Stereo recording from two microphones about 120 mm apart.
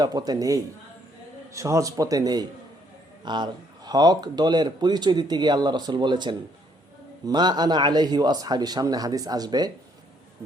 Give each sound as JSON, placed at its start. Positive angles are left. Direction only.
{"t": 0.0, "sound": "a man's voice", "side_deg": -35}